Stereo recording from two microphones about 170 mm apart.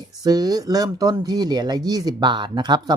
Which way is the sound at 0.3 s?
25° right (ahead or behind).